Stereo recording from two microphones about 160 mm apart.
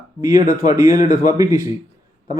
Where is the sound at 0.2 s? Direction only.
25° right (ahead or behind).